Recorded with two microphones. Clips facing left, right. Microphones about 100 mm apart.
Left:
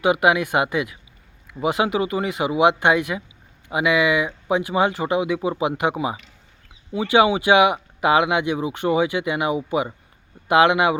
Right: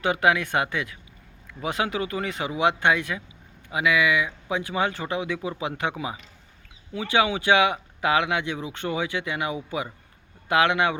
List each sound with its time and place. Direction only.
0.0 s speech: 10° left (ahead or behind)